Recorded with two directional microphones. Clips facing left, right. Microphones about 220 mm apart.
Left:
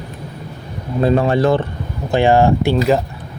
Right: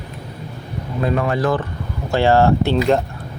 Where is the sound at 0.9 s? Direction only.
30° left (ahead or behind).